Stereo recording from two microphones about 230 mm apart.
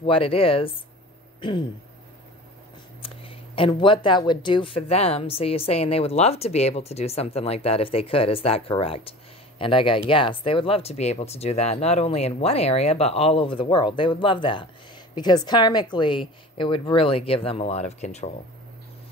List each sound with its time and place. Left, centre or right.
0.0 s speech: left
3.0 s speech: left